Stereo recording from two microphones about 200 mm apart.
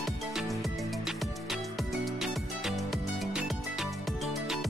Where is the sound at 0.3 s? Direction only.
Centre (ahead or behind).